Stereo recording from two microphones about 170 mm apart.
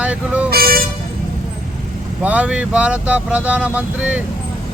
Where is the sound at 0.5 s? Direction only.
60° right (ahead or behind).